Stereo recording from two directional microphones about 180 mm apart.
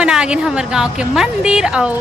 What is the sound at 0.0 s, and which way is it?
A woman's voice, 5° right (ahead or behind).